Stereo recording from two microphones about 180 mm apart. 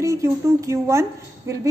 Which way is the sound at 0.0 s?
15° right (ahead or behind).